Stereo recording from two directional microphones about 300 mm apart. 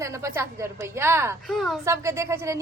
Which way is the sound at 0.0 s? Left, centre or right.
Centre.